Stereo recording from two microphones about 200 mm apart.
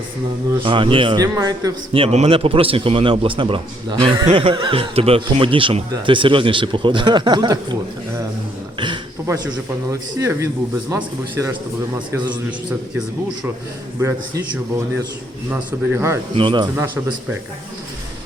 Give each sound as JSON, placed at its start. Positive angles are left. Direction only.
{"t": 0.6, "sound": "a man's voice", "side_deg": -25}
{"t": 8.8, "sound": "a man's voice", "side_deg": -20}
{"t": 14.0, "sound": "a man's voice", "side_deg": -15}
{"t": 15.7, "sound": "a man's voice", "side_deg": -10}
{"t": 16.3, "sound": "a man's voice", "side_deg": -25}